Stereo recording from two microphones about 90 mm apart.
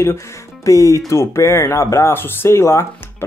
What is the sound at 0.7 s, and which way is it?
Speech, 35° left (ahead or behind).